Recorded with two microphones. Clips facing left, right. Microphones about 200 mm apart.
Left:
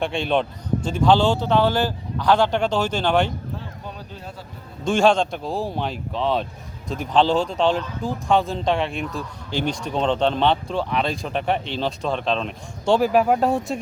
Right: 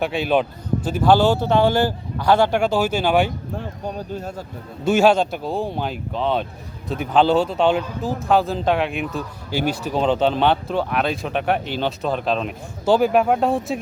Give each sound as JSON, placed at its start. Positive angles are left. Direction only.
{"t": 0.0, "sound": "a man's voice", "side_deg": -5}
{"t": 3.6, "sound": "speech", "side_deg": -45}
{"t": 4.8, "sound": "speech", "side_deg": -5}